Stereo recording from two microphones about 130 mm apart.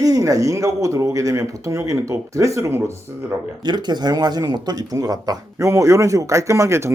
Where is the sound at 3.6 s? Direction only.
35° right (ahead or behind).